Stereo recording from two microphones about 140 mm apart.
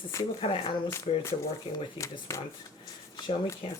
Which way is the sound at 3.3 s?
50° left (ahead or behind).